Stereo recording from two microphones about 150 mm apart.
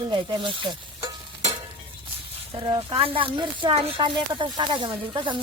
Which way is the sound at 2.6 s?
35° right (ahead or behind).